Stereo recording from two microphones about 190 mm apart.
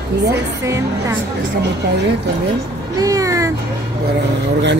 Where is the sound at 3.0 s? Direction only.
15° right (ahead or behind).